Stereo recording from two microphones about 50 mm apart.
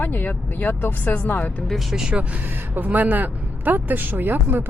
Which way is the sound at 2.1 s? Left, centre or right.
Right.